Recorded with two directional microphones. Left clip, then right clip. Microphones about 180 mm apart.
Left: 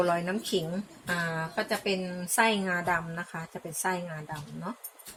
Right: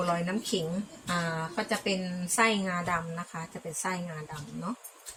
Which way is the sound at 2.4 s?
40° left (ahead or behind).